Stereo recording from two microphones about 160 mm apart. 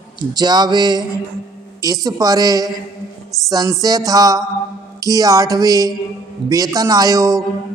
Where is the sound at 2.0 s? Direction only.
20° right (ahead or behind).